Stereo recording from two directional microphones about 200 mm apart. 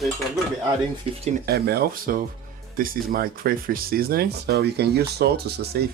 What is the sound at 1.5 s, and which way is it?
Speech, 55° right (ahead or behind).